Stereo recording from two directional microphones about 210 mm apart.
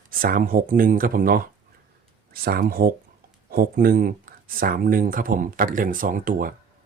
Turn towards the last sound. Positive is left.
turn(degrees=-40)  # may be behind; listen again after turning